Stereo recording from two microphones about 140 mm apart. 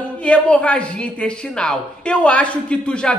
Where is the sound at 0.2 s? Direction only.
10° left (ahead or behind).